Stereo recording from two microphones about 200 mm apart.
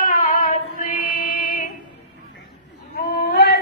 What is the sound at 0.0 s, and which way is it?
Female singing, 45° left (ahead or behind).